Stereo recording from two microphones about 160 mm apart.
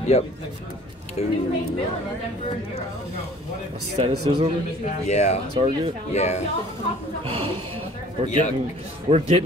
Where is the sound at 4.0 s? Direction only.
40° right (ahead or behind).